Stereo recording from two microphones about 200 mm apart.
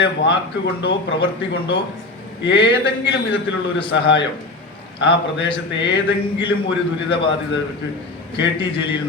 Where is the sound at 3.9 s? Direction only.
65° left (ahead or behind).